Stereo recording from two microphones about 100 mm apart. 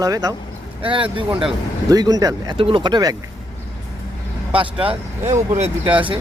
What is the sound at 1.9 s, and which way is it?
Speech, 40° right (ahead or behind).